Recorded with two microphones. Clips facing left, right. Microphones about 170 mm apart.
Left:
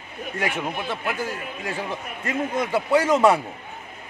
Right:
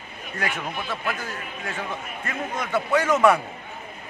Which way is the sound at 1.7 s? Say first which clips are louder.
Left 2 dB; 35° left (ahead or behind).